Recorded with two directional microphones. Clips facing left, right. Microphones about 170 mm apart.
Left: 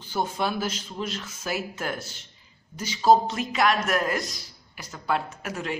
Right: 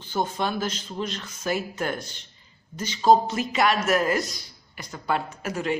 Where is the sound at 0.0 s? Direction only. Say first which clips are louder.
Right 1 dB; 10° left (ahead or behind).